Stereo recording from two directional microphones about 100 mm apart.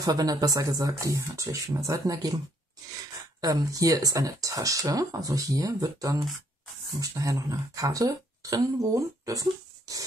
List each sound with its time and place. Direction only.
0.0 s speech: 40° right (ahead or behind)